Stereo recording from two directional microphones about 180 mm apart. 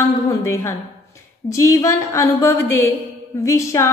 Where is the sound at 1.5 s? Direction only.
15° left (ahead or behind).